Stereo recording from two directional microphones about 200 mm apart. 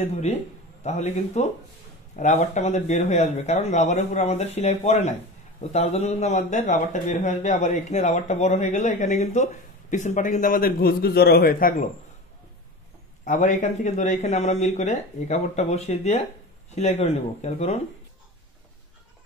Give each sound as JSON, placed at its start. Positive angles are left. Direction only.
{"t": 0.8, "sound": "a man's voice", "side_deg": 35}
{"t": 13.2, "sound": "a man's voice", "side_deg": 40}